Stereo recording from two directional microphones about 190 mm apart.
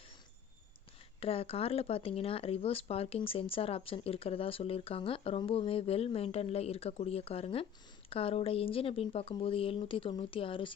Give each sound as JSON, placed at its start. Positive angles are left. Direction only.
{"t": 1.2, "sound": "speech", "side_deg": 30}